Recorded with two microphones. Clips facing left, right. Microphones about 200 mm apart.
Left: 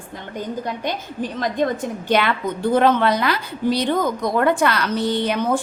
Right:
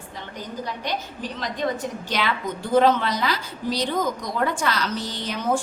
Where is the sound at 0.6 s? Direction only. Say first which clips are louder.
Left 4 dB; 50° left (ahead or behind).